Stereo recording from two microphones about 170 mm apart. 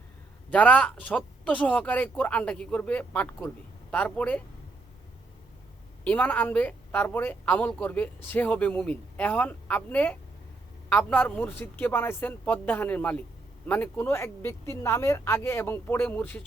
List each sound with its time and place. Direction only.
0.5 s a woman's voice: 5° left (ahead or behind)
6.1 s a woman's voice: 10° left (ahead or behind)